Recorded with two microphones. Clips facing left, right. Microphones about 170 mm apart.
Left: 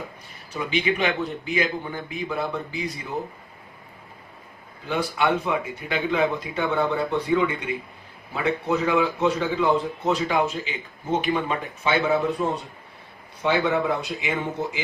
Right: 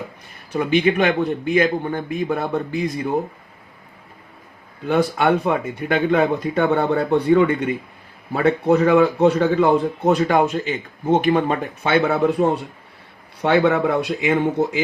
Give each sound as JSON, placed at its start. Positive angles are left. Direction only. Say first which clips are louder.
{"t": 0.5, "sound": "a man's voice", "louder": "right 7 dB", "side_deg": -50}
{"t": 4.9, "sound": "a man's voice", "louder": "right 6 dB", "side_deg": -60}